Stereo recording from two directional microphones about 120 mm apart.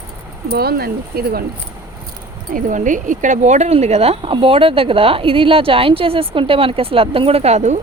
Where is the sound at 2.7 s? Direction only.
90° right; by 7.8 s 70° right (ahead or behind).